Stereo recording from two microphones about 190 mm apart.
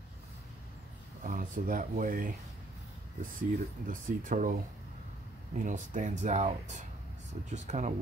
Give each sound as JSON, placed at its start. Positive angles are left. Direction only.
{"t": 1.2, "sound": "speech", "side_deg": -45}
{"t": 5.6, "sound": "speech", "side_deg": -40}